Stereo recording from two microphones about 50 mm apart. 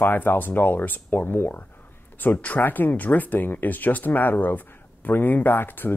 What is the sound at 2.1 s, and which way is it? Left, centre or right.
Speech, left.